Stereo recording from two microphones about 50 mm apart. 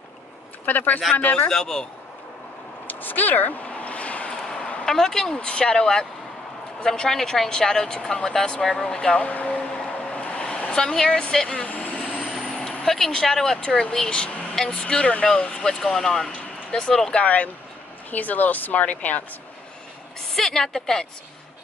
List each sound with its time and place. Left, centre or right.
0.7 s speech: left
1.5 s speech: centre
2.9 s a sound: left
4.3 s speech: centre
9.8 s a sound: left
12.3 s vehicle: centre
13.6 s speech: centre
15.6 s speech: centre
17.1 s speech: left
20.3 s speech: centre